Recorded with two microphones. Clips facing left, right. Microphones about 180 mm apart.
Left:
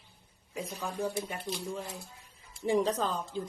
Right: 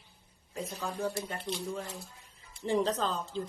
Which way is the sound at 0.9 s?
15° left (ahead or behind).